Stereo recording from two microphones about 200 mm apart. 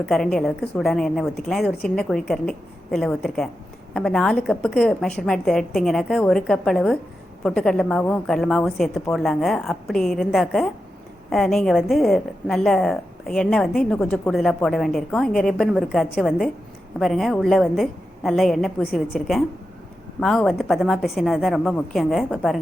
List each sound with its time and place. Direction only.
0.1 s a woman's voice: centre (ahead or behind)